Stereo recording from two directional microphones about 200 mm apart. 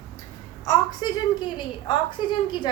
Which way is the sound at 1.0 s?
20° left (ahead or behind).